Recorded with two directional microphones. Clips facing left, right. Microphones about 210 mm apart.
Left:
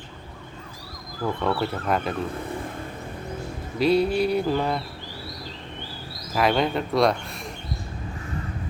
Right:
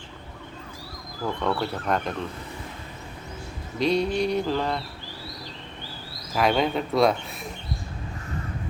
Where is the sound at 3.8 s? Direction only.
5° left (ahead or behind).